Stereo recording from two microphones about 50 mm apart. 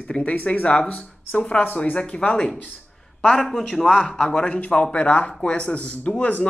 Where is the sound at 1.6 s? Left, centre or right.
Left.